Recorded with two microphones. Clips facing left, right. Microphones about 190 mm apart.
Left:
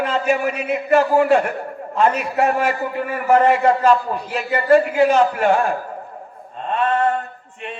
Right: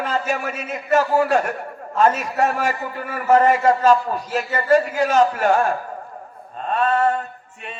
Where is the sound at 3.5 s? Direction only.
40° right (ahead or behind).